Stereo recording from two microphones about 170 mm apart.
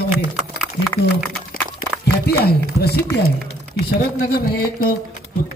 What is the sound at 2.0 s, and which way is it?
Speech, 70° left (ahead or behind).